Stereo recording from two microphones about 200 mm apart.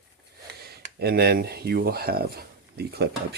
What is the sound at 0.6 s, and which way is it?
Speech, 50° right (ahead or behind).